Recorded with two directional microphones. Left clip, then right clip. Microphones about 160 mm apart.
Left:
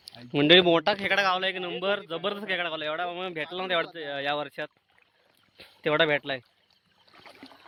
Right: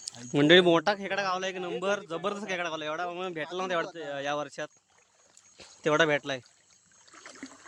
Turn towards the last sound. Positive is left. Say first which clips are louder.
# left 1 dB
turn(degrees=-15)  # may be behind; listen again after turning